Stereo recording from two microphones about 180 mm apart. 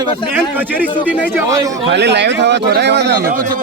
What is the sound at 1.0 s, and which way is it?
Speech, 10° right (ahead or behind).